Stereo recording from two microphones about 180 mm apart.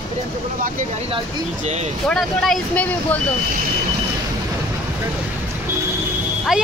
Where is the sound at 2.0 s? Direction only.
Centre (ahead or behind).